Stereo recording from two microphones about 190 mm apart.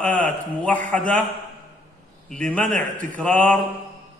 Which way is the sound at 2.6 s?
45° right (ahead or behind).